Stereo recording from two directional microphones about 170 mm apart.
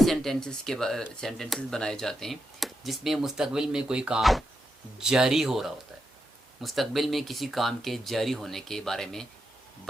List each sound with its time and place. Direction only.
0.0 s speech: centre (ahead or behind)